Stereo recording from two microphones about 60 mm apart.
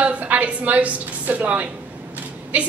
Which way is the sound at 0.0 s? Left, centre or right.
Right.